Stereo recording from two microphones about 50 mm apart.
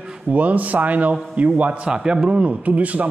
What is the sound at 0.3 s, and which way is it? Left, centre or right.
A man's voice, right.